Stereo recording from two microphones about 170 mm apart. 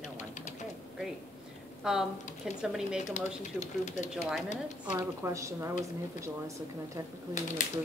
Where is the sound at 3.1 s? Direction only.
45° left (ahead or behind).